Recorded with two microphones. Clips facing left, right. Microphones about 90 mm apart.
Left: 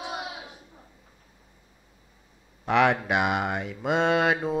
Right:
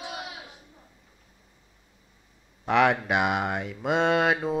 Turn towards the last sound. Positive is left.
turn(degrees=0)  # may be behind; listen again after turning